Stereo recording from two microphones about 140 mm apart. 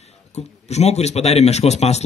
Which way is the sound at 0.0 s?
50° left (ahead or behind).